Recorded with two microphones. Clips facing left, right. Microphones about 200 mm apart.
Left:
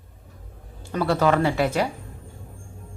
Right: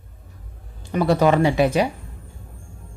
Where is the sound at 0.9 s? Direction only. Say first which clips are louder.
Right 3 dB; 15° right (ahead or behind).